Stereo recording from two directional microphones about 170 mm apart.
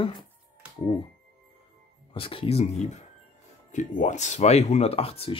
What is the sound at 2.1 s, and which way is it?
Speech, 30° left (ahead or behind).